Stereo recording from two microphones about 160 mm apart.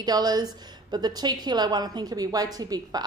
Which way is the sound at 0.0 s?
25° right (ahead or behind).